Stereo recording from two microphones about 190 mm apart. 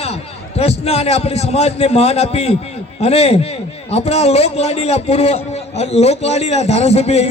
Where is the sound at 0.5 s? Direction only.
35° left (ahead or behind).